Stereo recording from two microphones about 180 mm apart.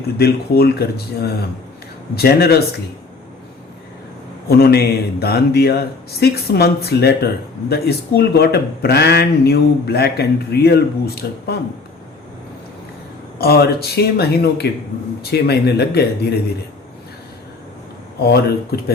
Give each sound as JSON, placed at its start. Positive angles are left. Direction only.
{"t": 0.2, "sound": "speech", "side_deg": 60}
{"t": 4.4, "sound": "speech", "side_deg": 60}
{"t": 13.4, "sound": "speech", "side_deg": 60}
{"t": 18.2, "sound": "speech", "side_deg": 60}